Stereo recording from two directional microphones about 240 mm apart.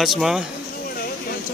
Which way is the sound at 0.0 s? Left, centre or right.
Centre.